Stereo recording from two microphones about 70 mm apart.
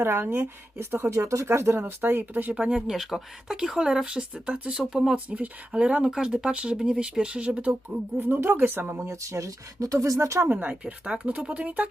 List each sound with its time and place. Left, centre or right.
0.0 s a woman's voice: right
1.1 s a woman's voice: right
1.8 s speech: right
2.5 s speech: centre
5.1 s speech: centre
8.2 s a woman's voice: right
9.0 s speech: right
10.5 s speech: right